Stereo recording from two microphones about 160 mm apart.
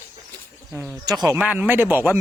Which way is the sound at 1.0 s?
25° right (ahead or behind).